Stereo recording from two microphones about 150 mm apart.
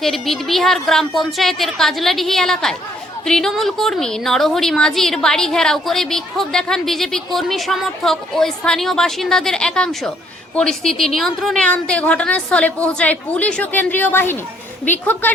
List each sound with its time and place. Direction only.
0.0 s a woman's voice: centre (ahead or behind)